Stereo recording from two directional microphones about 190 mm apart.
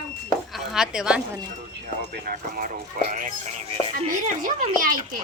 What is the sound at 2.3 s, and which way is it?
Speech, 50° right (ahead or behind).